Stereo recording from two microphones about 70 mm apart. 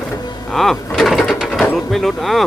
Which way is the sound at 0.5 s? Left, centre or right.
Centre.